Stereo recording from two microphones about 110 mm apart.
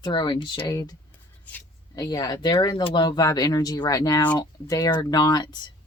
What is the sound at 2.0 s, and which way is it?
Speech, 35° left (ahead or behind).